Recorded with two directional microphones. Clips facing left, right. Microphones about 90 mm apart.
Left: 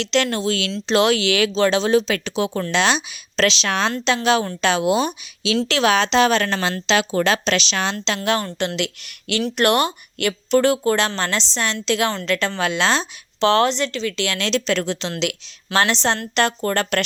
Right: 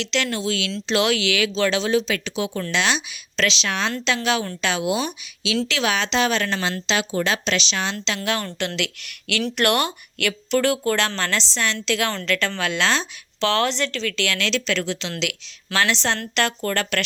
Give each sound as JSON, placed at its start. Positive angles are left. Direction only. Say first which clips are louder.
{"t": 0.0, "sound": "a woman's voice", "louder": "left 4 dB", "side_deg": 45}
{"t": 6.8, "sound": "speech", "louder": "left 6 dB", "side_deg": 65}
{"t": 7.9, "sound": "a woman's voice", "louder": "left 4 dB", "side_deg": 35}
{"t": 16.1, "sound": "a woman's voice", "louder": "left 2 dB", "side_deg": 15}
{"t": 16.4, "sound": "a woman's voice", "louder": "left 4 dB", "side_deg": 30}